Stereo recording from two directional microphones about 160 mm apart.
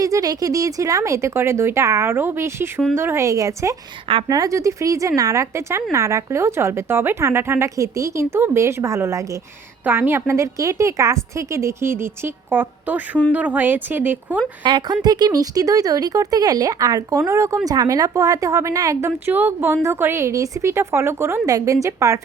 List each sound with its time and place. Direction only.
0.0 s a woman's voice: 20° right (ahead or behind)
14.6 s a woman's voice: 30° right (ahead or behind)